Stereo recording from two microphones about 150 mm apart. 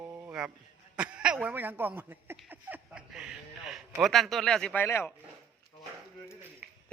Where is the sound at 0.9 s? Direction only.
5° right (ahead or behind).